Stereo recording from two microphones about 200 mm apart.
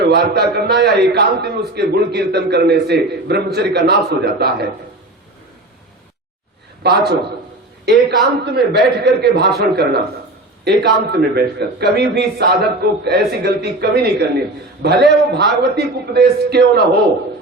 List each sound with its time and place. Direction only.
0.1 s a man's voice: 55° right (ahead or behind)
6.8 s a man's voice: 55° right (ahead or behind)